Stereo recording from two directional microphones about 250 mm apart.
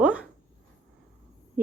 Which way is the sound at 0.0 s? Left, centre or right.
Centre.